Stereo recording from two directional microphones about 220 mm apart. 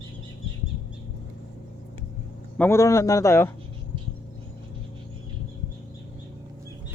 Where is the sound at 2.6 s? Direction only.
10° left (ahead or behind).